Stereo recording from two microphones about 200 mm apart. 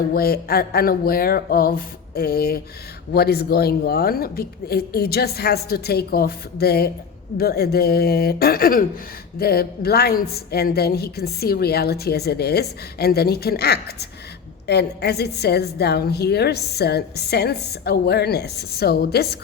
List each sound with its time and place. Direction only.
0.1 s a woman's voice: 50° left (ahead or behind)